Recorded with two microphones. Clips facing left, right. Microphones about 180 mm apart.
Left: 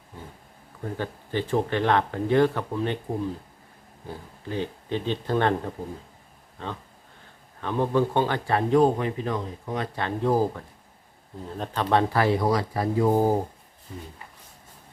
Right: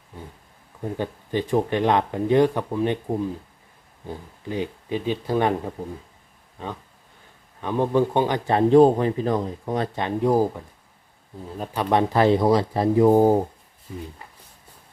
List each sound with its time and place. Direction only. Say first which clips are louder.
0.9 s speech: right 3 dB; 15° right (ahead or behind)
4.4 s speech: right 2 dB; 15° right (ahead or behind)
7.6 s speech: right 3 dB; 15° right (ahead or behind); by 9.9 s 35° right (ahead or behind)
9.9 s speech: right 2 dB; 15° right (ahead or behind)